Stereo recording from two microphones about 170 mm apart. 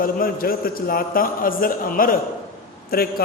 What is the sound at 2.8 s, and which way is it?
Speech, 65° left (ahead or behind).